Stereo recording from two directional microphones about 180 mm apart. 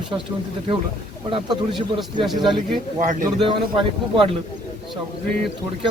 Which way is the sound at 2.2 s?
Centre (ahead or behind).